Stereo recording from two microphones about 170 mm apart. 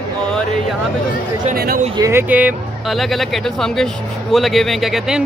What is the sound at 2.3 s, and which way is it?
Speech, 5° right (ahead or behind).